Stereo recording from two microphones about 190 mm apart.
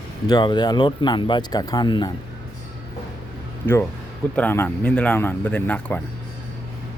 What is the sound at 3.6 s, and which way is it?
Speech, 10° left (ahead or behind).